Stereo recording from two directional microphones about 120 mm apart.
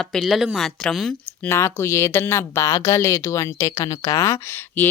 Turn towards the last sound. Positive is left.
turn(degrees=20)  # may be behind; listen again after turning